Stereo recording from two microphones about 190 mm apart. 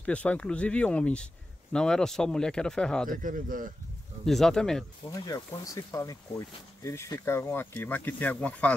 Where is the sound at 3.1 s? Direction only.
45° right (ahead or behind).